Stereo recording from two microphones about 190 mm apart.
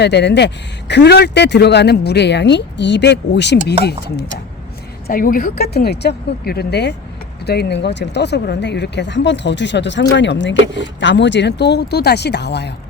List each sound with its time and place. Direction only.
0.0 s speech: 65° left (ahead or behind)
5.0 s speech: 45° left (ahead or behind)